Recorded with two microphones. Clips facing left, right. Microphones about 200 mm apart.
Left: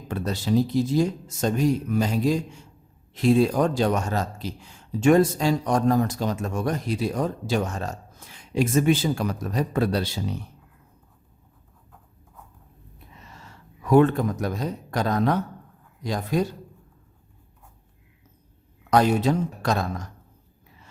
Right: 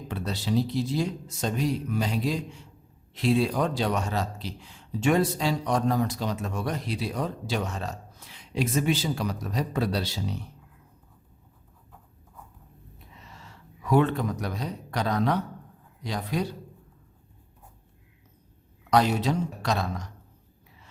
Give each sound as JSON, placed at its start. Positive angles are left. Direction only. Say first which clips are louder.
{"t": 0.1, "sound": "speech", "louder": "left 4 dB", "side_deg": 45}
{"t": 13.2, "sound": "speech", "louder": "left 1 dB", "side_deg": 45}
{"t": 18.9, "sound": "speech", "louder": "left 3 dB", "side_deg": 50}